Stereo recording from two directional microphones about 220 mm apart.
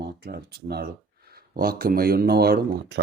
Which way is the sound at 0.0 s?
45° right (ahead or behind).